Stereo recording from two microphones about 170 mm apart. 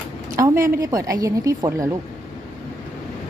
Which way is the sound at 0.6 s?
20° right (ahead or behind).